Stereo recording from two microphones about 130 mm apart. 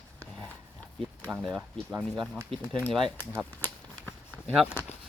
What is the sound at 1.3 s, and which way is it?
Speech, centre (ahead or behind).